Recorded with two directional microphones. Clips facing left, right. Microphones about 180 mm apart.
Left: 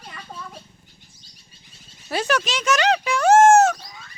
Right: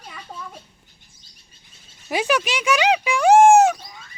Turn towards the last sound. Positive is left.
turn(degrees=0)  # may be behind; listen again after turning